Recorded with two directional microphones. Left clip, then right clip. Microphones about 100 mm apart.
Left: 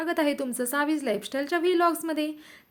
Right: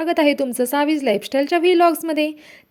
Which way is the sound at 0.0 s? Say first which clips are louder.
Right 9 dB; 75° right (ahead or behind).